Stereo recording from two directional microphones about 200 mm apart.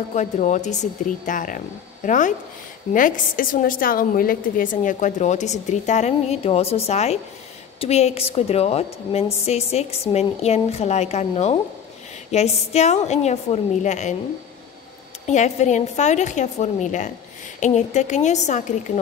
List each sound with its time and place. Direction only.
0.1 s a woman's voice: 35° left (ahead or behind)
15.2 s a woman's voice: 35° left (ahead or behind)